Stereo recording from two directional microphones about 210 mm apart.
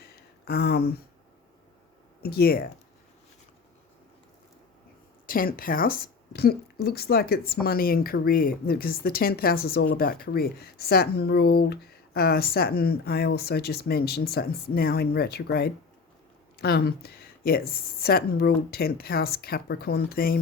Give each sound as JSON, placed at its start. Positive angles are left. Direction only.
{"t": 0.0, "sound": "a sound", "side_deg": 45}
{"t": 2.2, "sound": "a woman's voice", "side_deg": 45}
{"t": 5.2, "sound": "a woman's voice", "side_deg": 45}